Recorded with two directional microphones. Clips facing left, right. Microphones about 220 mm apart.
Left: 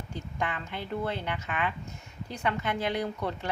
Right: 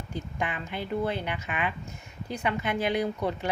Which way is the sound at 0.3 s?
15° right (ahead or behind).